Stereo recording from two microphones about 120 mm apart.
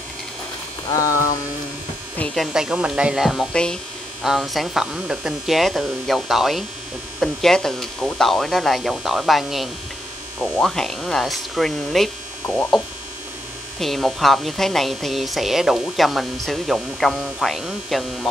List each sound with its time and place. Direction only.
0.8 s mains hum: 30° left (ahead or behind)
2.3 s speech: 5° right (ahead or behind)
13.7 s speech: centre (ahead or behind)